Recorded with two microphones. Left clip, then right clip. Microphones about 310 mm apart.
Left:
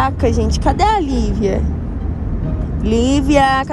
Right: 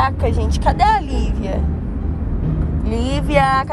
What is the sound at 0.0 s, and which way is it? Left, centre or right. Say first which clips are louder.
Speech: left 2 dB; left.